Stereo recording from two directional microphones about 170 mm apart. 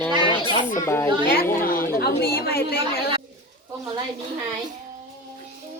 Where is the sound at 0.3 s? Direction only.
30° left (ahead or behind).